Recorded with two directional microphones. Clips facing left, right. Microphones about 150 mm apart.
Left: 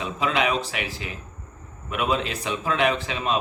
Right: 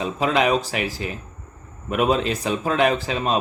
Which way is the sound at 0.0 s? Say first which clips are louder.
Right 4 dB; 40° right (ahead or behind).